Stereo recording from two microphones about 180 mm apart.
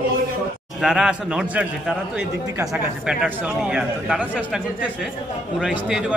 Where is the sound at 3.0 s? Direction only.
5° right (ahead or behind).